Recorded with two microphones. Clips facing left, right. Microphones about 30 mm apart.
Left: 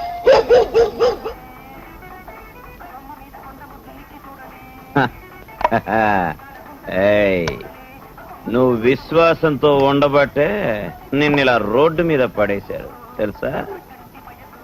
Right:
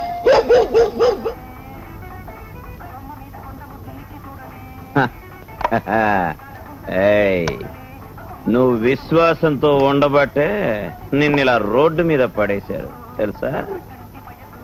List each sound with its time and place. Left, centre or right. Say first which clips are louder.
0.0 s music: left 1 dB; left
5.6 s speech: left 2 dB; centre
5.9 s a man's voice: even; centre
7.4 s speech: right 1 dB; left
8.4 s a man's voice: even; centre
12.6 s a man's voice: right 1 dB; centre